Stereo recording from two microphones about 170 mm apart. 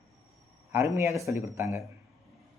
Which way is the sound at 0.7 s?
15° right (ahead or behind).